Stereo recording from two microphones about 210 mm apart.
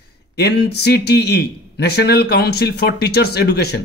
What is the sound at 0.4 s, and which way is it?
Speech, 50° left (ahead or behind).